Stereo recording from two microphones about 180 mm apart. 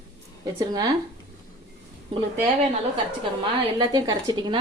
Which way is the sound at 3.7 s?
20° right (ahead or behind).